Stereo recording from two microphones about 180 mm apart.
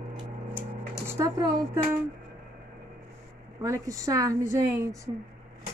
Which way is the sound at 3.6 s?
20° right (ahead or behind).